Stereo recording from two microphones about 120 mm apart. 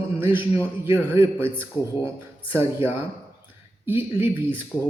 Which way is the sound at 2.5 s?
20° right (ahead or behind).